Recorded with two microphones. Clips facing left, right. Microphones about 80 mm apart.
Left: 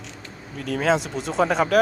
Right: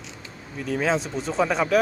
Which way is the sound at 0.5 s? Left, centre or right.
Left.